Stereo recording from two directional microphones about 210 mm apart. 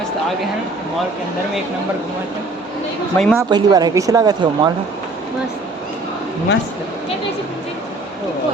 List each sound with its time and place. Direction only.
3.2 s speech: 5° left (ahead or behind)
3.5 s speech: 20° right (ahead or behind)